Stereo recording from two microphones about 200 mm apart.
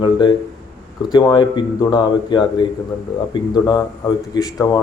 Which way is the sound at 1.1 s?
20° left (ahead or behind).